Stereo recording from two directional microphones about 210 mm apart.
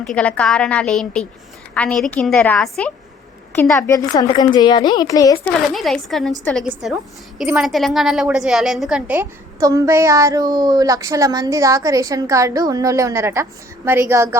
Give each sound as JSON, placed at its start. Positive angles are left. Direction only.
{"t": 0.0, "sound": "a woman's voice", "side_deg": 5}
{"t": 5.7, "sound": "a woman's voice", "side_deg": 0}